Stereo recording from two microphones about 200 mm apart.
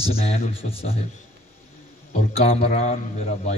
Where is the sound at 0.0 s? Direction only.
30° left (ahead or behind).